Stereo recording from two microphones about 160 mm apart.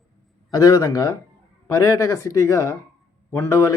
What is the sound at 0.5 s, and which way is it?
Speech, 25° left (ahead or behind).